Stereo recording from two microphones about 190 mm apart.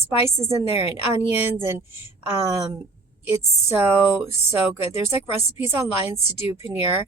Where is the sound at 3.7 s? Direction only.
15° right (ahead or behind).